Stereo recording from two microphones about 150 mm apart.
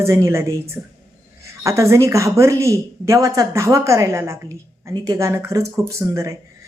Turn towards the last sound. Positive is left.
turn(degrees=-20)  # may be behind; listen again after turning